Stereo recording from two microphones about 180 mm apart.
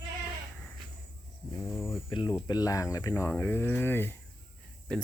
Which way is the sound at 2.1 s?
30° left (ahead or behind).